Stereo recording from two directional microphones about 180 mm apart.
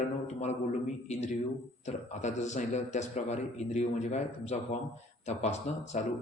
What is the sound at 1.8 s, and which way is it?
Speech, 40° left (ahead or behind).